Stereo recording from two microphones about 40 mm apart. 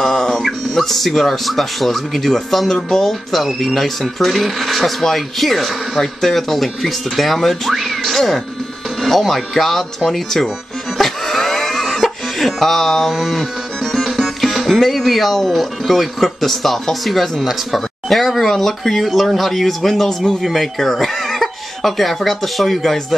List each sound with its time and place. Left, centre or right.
0.0 s a sound: centre
0.7 s speech: centre
11.0 s cough: centre
13.1 s speech: centre